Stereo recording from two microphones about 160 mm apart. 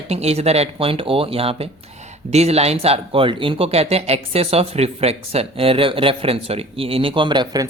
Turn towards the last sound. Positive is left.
turn(degrees=-25)  # may be behind; listen again after turning